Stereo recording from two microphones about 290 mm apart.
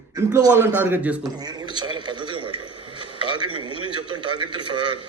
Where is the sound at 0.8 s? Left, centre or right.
Centre.